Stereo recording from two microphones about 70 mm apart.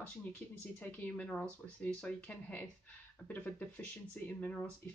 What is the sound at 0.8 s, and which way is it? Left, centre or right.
Speech, left.